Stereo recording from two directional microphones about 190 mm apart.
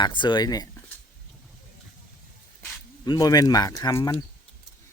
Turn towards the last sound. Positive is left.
turn(degrees=15)  # may be behind; listen again after turning